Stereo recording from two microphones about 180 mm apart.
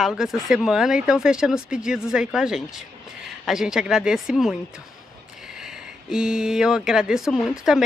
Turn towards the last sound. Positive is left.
turn(degrees=0)  # may be behind; listen again after turning